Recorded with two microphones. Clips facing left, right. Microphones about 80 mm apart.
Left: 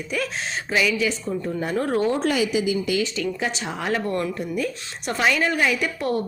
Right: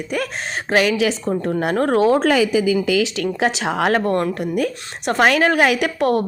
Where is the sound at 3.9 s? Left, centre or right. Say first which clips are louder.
Right 6 dB; right.